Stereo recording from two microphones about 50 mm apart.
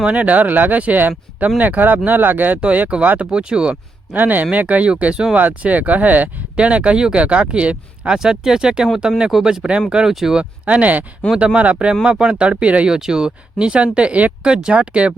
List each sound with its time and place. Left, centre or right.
0.0 s speech: right
4.1 s speech: right; by 10.3 s centre
10.7 s speech: right